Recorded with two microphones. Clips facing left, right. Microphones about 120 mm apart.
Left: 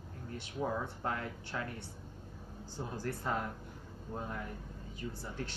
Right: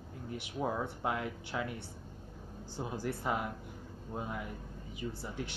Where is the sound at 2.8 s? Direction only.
10° right (ahead or behind).